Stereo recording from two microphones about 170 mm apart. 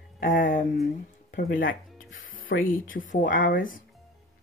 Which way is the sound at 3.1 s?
55° left (ahead or behind).